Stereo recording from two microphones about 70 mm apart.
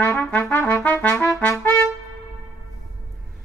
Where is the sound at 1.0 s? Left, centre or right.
Left.